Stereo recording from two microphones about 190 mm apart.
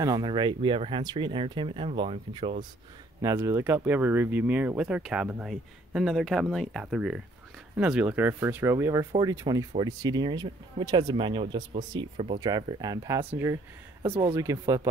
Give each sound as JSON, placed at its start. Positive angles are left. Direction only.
{"t": 0.0, "sound": "speech", "side_deg": -20}
{"t": 3.2, "sound": "speech", "side_deg": -15}
{"t": 14.3, "sound": "speech", "side_deg": -15}